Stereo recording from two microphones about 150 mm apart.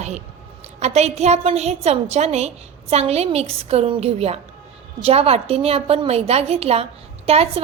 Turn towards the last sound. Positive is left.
turn(degrees=-40)  # may be behind; listen again after turning